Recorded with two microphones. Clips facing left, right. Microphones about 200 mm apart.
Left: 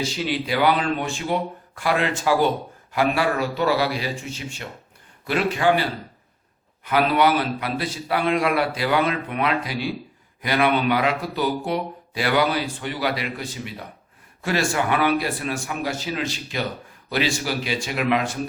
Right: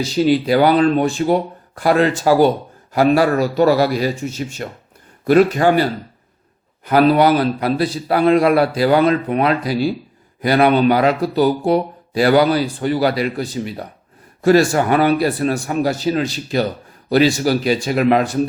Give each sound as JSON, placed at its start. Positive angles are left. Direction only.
{"t": 0.0, "sound": "speech", "side_deg": -40}